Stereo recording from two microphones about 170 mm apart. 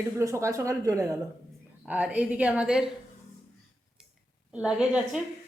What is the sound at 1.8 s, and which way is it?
A woman's voice, 5° right (ahead or behind).